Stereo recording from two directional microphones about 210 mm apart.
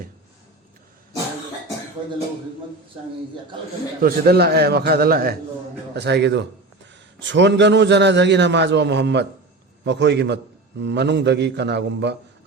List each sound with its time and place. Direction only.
4.0 s a man's voice: 50° right (ahead or behind)